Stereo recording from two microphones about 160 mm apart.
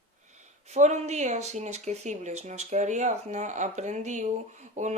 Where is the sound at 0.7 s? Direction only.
45° right (ahead or behind).